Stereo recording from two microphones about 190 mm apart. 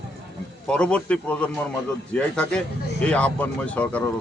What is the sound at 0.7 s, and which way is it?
Speech, 5° left (ahead or behind).